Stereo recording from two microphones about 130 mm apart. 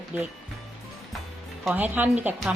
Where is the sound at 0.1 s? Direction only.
10° right (ahead or behind).